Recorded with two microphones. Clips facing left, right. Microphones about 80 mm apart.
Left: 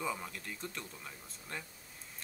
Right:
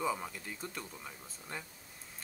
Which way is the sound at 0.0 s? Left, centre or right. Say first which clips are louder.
Right 3 dB; centre.